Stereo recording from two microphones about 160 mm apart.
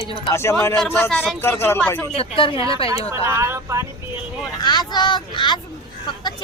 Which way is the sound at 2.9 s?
20° right (ahead or behind).